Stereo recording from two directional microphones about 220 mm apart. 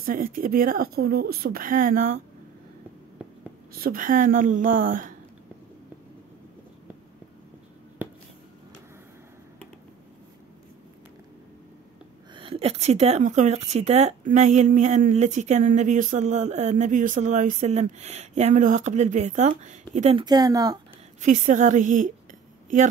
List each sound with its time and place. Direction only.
0.0 s speech: 40° right (ahead or behind)
3.7 s speech: 40° right (ahead or behind)
12.4 s speech: 25° right (ahead or behind)
21.2 s speech: 35° right (ahead or behind)